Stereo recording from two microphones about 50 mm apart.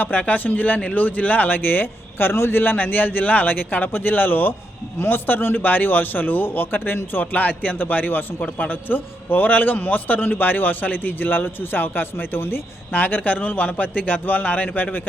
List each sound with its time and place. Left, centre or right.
0.0 s a man's voice: left